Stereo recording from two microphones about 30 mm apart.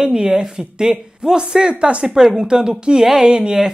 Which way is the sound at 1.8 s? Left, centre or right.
Right.